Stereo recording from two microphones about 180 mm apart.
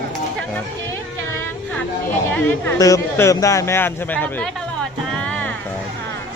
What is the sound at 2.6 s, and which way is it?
Speech, 15° left (ahead or behind).